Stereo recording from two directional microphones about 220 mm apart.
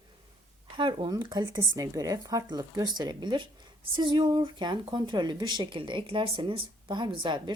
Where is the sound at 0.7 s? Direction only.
20° right (ahead or behind).